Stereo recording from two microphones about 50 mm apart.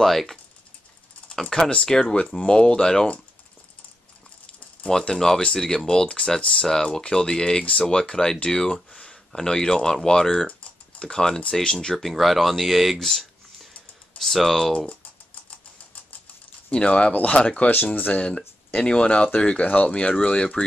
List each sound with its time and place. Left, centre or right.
0.0 s speech: centre
4.8 s speech: centre
12.0 s speech: centre
16.7 s speech: centre